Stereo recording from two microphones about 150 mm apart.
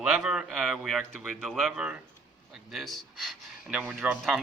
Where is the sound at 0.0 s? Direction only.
5° right (ahead or behind).